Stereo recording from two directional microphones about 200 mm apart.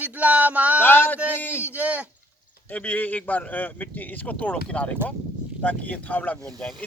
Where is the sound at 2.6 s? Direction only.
10° left (ahead or behind).